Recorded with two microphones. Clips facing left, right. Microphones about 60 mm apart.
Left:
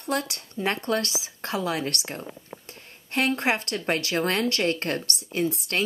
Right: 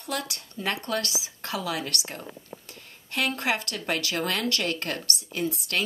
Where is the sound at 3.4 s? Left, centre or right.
Left.